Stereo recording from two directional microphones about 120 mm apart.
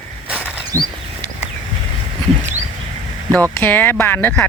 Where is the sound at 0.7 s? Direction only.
25° right (ahead or behind).